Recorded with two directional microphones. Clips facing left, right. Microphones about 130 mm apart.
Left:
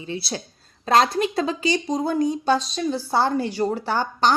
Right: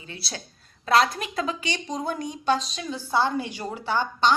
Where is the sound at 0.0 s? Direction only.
30° left (ahead or behind).